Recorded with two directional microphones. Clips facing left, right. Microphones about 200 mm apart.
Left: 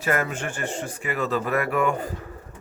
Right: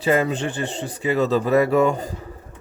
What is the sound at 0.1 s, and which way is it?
A man's voice, 25° right (ahead or behind).